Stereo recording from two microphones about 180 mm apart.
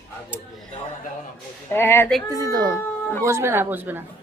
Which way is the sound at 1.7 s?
15° left (ahead or behind).